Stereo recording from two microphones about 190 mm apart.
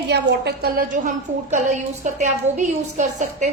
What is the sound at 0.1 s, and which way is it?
A woman's voice, 55° right (ahead or behind).